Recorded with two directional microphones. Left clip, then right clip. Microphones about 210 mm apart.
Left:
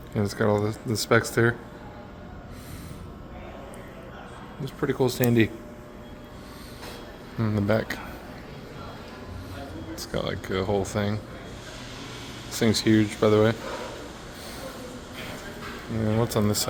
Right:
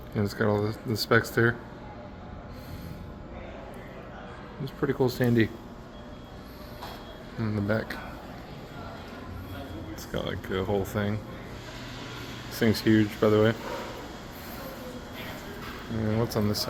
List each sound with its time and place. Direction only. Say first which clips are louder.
0.2 s speech: left 3 dB; 10° left (ahead or behind)
4.6 s speech: left 2 dB; 5° left (ahead or behind)
7.3 s speech: left 4 dB; 20° left (ahead or behind)
9.9 s speech: left 4 dB; 10° left (ahead or behind)
12.5 s speech: left 2 dB; 5° left (ahead or behind)
16.0 s speech: left 3 dB; 15° left (ahead or behind)